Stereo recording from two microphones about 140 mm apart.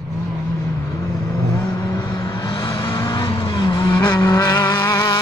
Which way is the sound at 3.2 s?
35° left (ahead or behind).